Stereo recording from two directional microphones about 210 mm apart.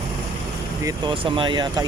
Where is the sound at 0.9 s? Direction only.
25° right (ahead or behind).